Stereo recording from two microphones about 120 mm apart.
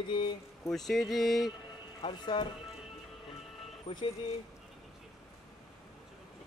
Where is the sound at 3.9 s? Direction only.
60° left (ahead or behind).